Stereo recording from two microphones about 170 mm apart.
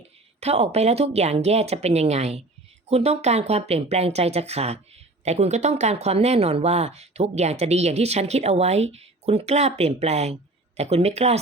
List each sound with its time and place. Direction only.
0.3 s speech: 40° right (ahead or behind)